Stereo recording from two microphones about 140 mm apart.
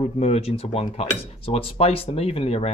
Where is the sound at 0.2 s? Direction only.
50° left (ahead or behind).